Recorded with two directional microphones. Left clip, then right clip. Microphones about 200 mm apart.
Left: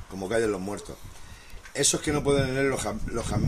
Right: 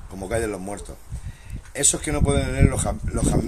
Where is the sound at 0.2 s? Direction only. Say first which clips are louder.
Even; 25° right (ahead or behind).